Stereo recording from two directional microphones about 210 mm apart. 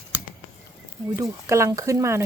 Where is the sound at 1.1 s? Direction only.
15° right (ahead or behind).